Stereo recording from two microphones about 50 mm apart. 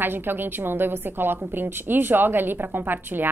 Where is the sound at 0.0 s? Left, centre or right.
Right.